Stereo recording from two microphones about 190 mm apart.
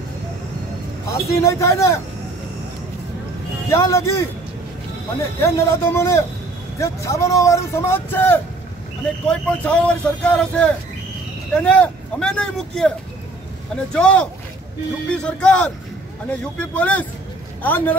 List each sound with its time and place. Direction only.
1.0 s speech: 15° left (ahead or behind)
3.7 s speech: 15° left (ahead or behind)
5.4 s speech: 15° left (ahead or behind)
13.9 s speech: 5° left (ahead or behind)